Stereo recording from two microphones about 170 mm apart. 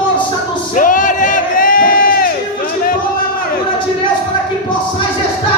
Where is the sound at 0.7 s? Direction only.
50° left (ahead or behind).